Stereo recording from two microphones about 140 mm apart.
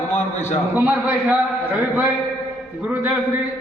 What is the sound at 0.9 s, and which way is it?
A man's voice, 10° right (ahead or behind).